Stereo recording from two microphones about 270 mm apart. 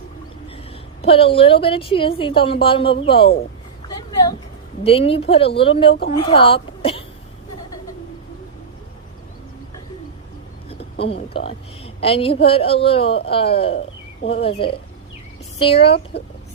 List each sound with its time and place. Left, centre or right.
1.0 s a woman's voice: left
4.8 s a woman's voice: left
11.0 s a woman's voice: left